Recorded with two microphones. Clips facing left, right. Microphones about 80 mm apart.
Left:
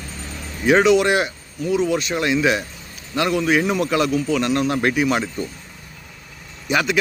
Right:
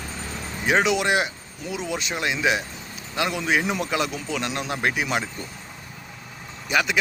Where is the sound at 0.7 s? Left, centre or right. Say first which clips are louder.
Left 6 dB; centre.